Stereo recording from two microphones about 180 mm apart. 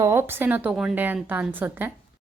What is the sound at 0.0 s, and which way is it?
A woman's voice, 15° right (ahead or behind).